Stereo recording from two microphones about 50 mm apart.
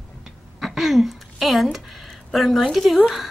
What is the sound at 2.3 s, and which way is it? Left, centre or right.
Speech, centre.